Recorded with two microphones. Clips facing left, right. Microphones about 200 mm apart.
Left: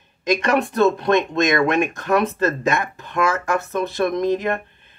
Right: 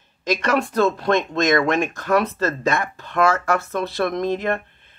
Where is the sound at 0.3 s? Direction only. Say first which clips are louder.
Left 2 dB; 20° left (ahead or behind).